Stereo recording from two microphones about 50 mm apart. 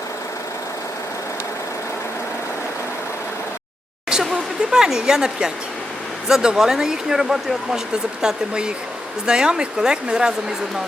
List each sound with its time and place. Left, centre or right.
4.7 s speech: centre